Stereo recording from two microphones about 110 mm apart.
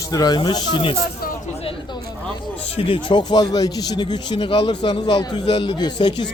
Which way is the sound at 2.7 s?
50° left (ahead or behind).